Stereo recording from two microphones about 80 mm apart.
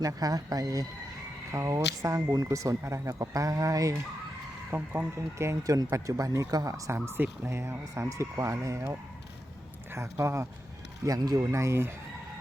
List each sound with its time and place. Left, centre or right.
0.0 s speech: right
4.7 s speech: right
11.0 s speech: right
11.5 s speech: right